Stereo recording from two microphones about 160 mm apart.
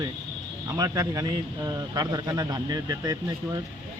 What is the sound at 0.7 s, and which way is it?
A man's voice, 20° right (ahead or behind).